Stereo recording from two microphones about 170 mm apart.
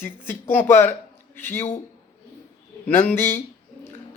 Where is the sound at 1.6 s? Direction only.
45° left (ahead or behind).